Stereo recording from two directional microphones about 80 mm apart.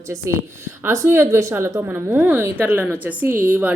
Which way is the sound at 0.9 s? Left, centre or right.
Right.